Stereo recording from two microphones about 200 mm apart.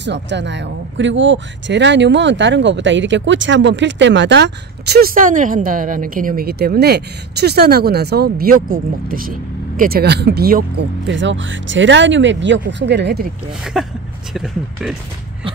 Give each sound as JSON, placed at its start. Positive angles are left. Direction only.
{"t": 0.0, "sound": "speech", "side_deg": -60}
{"t": 13.7, "sound": "speech", "side_deg": 0}